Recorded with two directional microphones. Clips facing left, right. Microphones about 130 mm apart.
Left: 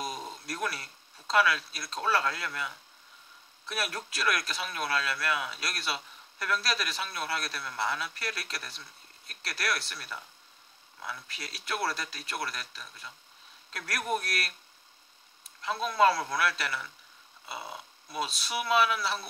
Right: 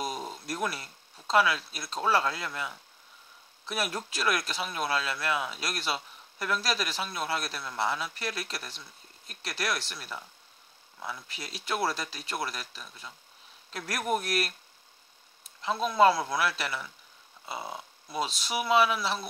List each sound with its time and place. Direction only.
0.5 s speech: 25° right (ahead or behind)
3.7 s speech: 25° right (ahead or behind)
11.6 s speech: 25° right (ahead or behind)
15.6 s speech: 20° right (ahead or behind)